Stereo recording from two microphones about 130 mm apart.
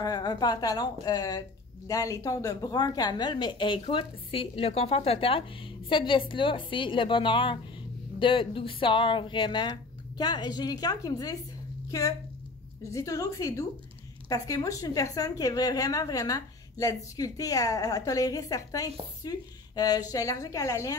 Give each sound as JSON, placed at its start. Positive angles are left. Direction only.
{"t": 0.0, "sound": "a woman's voice", "side_deg": 30}
{"t": 12.9, "sound": "a woman's voice", "side_deg": 25}